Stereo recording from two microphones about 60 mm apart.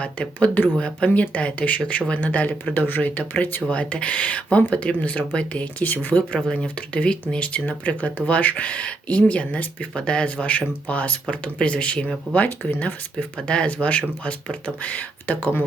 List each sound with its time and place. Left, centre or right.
0.0 s speech: left
0.8 s speech: centre
2.7 s speech: left
3.7 s speech: centre
12.5 s speech: left